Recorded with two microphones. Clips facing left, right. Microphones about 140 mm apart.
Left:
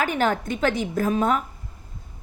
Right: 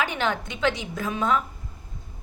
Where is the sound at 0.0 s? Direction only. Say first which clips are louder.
Left 4 dB; 45° left (ahead or behind).